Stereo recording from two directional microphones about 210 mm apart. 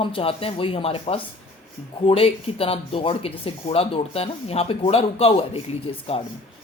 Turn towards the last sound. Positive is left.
turn(degrees=30)  # may be behind; listen again after turning